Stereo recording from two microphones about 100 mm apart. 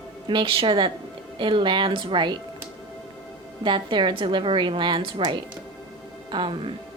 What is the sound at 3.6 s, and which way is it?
A woman's voice, 55° right (ahead or behind).